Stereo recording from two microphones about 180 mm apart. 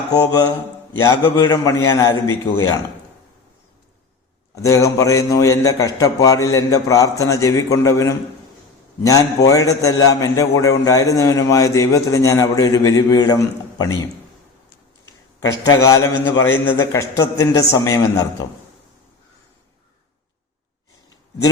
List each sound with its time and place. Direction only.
1.0 s a man's voice: 15° left (ahead or behind)
4.5 s a man's voice: 15° left (ahead or behind)
15.4 s a man's voice: 20° left (ahead or behind)